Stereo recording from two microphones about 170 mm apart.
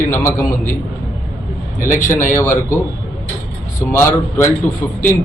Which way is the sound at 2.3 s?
15° left (ahead or behind).